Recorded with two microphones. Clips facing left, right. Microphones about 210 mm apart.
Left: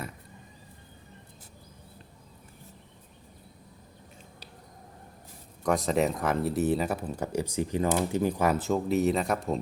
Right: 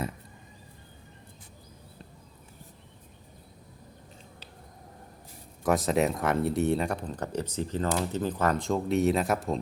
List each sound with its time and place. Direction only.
5.6 s speech: centre (ahead or behind)